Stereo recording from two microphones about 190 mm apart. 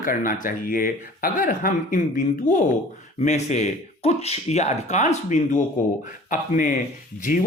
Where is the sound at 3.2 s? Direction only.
40° left (ahead or behind).